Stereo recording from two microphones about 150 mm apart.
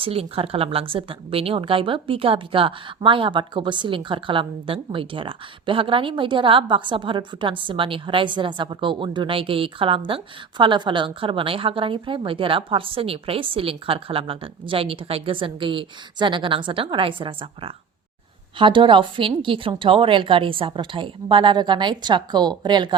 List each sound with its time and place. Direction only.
0.0 s speech: 40° right (ahead or behind)